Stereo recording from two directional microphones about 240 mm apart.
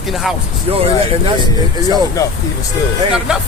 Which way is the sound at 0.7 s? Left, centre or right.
Right.